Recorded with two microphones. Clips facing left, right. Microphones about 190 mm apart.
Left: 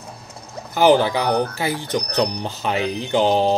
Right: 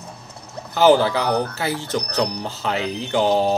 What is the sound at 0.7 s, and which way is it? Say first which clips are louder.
Speech: even; 15° left (ahead or behind).